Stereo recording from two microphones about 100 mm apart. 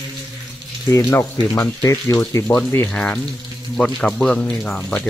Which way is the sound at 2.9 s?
10° left (ahead or behind).